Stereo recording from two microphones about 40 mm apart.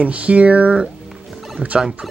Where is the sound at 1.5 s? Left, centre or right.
Right.